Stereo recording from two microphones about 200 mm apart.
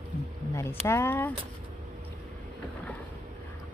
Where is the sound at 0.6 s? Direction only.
10° left (ahead or behind).